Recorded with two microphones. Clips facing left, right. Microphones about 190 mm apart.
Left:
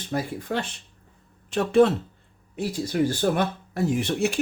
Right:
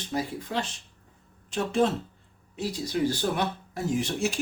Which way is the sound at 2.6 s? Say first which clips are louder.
Left 3 dB; 50° left (ahead or behind).